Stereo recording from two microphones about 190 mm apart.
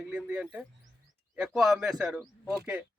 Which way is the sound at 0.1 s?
5° right (ahead or behind).